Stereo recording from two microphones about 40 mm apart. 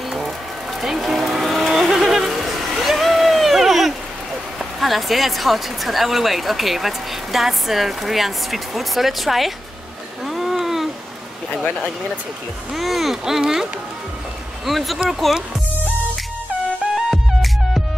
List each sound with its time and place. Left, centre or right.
0.7 s vehicle: centre
1.9 s a sound: centre
4.6 s speech: centre
10.2 s a sound: centre
12.7 s speech: centre
14.7 s speech: centre
17.1 s music: centre